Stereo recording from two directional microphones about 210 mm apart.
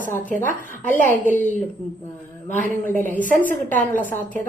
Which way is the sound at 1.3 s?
40° right (ahead or behind).